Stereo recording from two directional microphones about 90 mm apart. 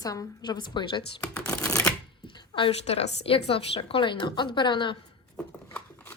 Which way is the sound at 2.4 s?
65° left (ahead or behind).